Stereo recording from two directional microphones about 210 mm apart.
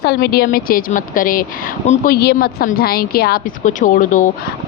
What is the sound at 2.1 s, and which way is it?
A woman's voice, 50° left (ahead or behind).